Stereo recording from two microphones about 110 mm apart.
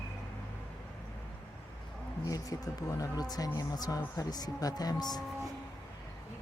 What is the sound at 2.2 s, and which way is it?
Speech, 30° left (ahead or behind).